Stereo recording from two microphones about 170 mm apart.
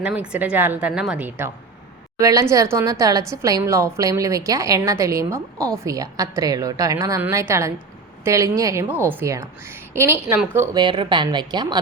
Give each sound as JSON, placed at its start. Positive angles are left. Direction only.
{"t": 0.0, "sound": "a woman's voice", "side_deg": -10}
{"t": 10.8, "sound": "a woman's voice", "side_deg": -30}